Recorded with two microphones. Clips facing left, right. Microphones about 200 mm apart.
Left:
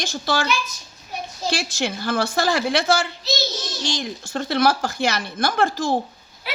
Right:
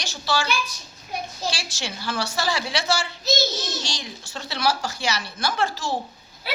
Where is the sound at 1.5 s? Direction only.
55° left (ahead or behind).